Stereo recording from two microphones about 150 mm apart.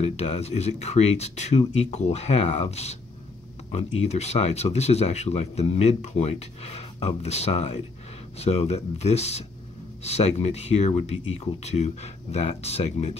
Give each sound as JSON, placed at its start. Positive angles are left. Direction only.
{"t": 0.0, "sound": "speech", "side_deg": 45}